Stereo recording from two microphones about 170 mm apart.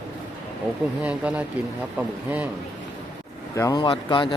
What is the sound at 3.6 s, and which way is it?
Speech, 25° left (ahead or behind).